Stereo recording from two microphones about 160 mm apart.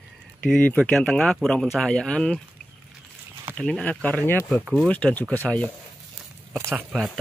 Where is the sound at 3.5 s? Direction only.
5° left (ahead or behind).